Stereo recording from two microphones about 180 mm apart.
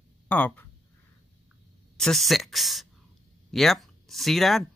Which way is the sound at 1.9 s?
Centre (ahead or behind).